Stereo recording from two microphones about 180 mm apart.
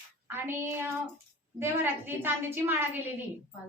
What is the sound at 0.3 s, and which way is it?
A woman's voice, 10° right (ahead or behind).